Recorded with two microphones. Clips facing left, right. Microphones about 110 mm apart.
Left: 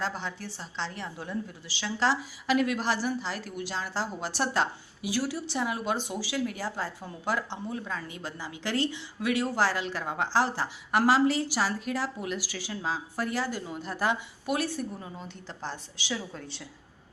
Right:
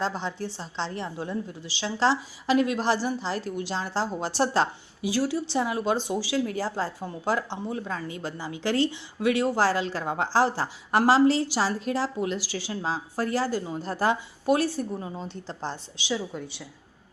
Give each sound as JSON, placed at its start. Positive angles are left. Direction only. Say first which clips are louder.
{"t": 0.0, "sound": "a woman's voice", "louder": "right 4 dB", "side_deg": -25}